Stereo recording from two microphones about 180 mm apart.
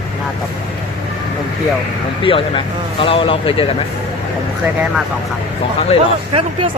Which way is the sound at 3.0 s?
30° left (ahead or behind).